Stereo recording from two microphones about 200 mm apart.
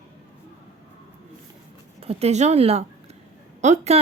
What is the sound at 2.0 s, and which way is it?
A woman's voice, 30° right (ahead or behind).